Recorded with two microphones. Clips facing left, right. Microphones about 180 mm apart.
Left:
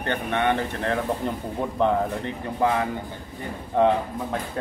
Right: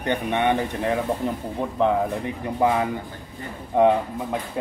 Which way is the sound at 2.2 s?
15° right (ahead or behind).